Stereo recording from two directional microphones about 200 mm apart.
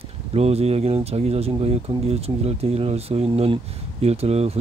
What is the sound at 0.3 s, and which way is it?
Speech, 30° right (ahead or behind).